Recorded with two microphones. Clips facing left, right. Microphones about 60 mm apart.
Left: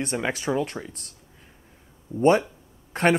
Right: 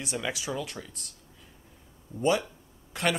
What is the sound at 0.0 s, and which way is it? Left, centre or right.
Speech, left.